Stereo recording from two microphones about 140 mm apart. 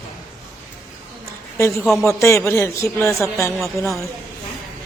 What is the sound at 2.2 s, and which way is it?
A man's voice, 20° left (ahead or behind).